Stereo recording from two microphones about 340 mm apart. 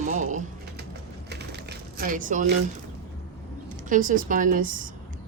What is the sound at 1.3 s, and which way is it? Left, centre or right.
Typewriter, right.